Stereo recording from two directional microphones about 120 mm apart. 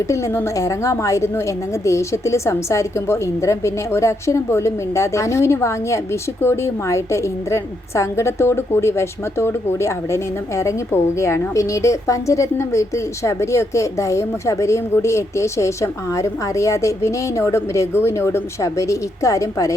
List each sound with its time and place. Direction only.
0.1 s a woman's voice: 20° left (ahead or behind)